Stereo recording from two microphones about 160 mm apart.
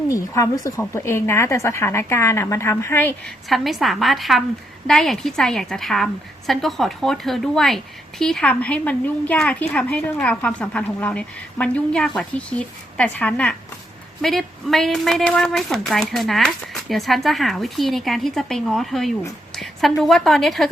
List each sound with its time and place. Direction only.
0.1 s a woman's voice: 20° left (ahead or behind)
3.5 s a woman's voice: centre (ahead or behind)